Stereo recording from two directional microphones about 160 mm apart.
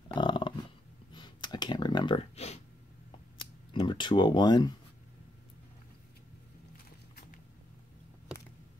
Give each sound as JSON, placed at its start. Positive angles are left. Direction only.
{"t": 0.1, "sound": "a sound", "side_deg": 30}
{"t": 1.1, "sound": "clicking", "side_deg": 25}
{"t": 3.7, "sound": "speech", "side_deg": 30}